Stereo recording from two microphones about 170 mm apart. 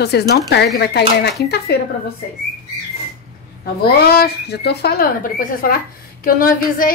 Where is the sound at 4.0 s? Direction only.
65° left (ahead or behind).